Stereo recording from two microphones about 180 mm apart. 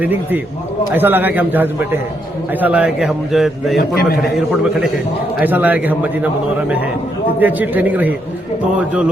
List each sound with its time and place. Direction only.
0.0 s a man's voice: 10° right (ahead or behind)
3.8 s a man's voice: 55° left (ahead or behind)
4.2 s a man's voice: centre (ahead or behind)